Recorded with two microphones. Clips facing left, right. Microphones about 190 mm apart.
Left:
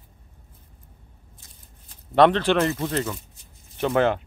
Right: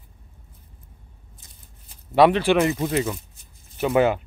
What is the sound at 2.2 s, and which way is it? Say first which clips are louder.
Speech: right 1 dB; 10° right (ahead or behind).